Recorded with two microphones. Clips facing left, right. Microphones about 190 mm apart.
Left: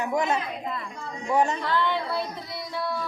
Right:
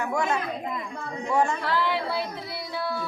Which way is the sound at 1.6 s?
5° right (ahead or behind).